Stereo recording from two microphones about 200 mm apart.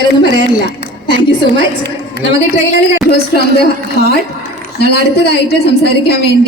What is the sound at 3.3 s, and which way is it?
A woman's voice, 55° left (ahead or behind).